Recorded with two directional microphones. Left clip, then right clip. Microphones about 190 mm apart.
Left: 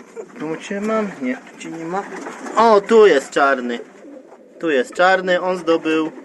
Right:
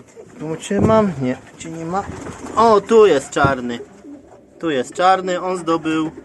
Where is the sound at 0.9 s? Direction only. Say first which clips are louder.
Right 5 dB; 40° right (ahead or behind).